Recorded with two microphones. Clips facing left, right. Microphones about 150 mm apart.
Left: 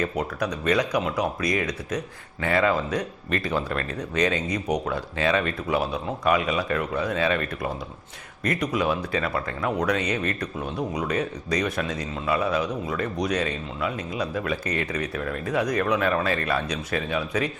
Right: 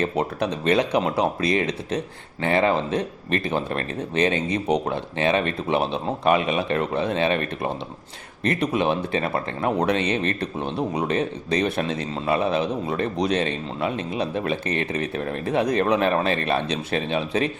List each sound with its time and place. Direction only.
0.0 s speech: 25° right (ahead or behind)